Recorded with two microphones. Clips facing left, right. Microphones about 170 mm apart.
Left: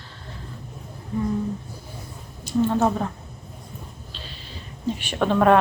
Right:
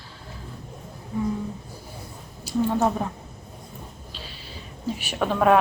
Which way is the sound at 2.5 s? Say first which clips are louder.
Left 2 dB; 10° right (ahead or behind).